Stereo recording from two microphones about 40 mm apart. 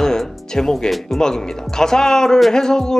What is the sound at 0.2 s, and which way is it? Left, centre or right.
Music, centre.